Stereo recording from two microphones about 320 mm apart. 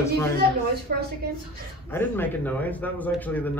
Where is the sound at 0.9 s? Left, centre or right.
Right.